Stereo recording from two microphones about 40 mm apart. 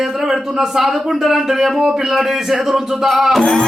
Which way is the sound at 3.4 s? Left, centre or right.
Centre.